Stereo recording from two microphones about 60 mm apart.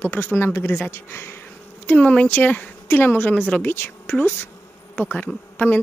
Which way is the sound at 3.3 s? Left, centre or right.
Left.